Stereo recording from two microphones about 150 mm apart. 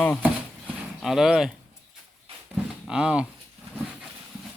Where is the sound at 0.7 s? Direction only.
Centre (ahead or behind).